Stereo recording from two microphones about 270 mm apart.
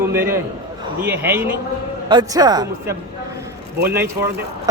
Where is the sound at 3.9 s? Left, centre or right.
Centre.